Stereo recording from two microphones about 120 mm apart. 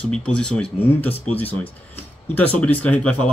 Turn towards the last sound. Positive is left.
turn(degrees=10)  # may be behind; listen again after turning